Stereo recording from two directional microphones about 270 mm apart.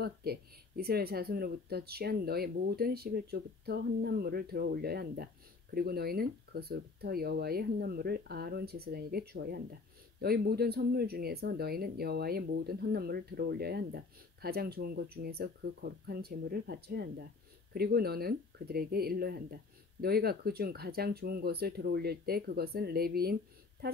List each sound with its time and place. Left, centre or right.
0.0 s speech: right